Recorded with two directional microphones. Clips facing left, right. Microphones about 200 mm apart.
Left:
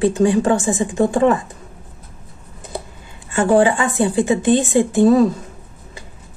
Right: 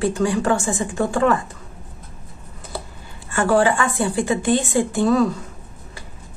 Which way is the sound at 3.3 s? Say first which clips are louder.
Left 3 dB; 20° left (ahead or behind).